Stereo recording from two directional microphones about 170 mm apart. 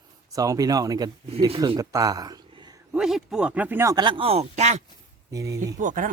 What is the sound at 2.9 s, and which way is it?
Speech, 5° right (ahead or behind).